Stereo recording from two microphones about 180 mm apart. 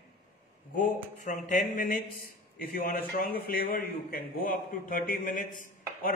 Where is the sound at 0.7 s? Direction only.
45° left (ahead or behind).